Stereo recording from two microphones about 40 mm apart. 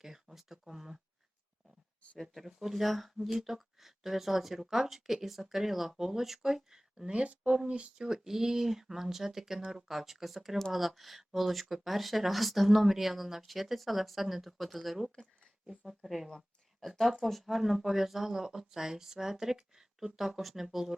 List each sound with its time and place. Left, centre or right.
0.0 s speech: centre
2.3 s speech: centre
7.1 s speech: right
9.9 s speech: centre
15.7 s speech: centre
16.0 s speech: centre